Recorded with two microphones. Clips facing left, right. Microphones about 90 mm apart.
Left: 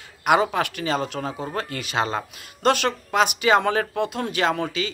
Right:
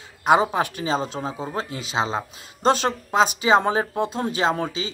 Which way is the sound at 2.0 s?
15° right (ahead or behind).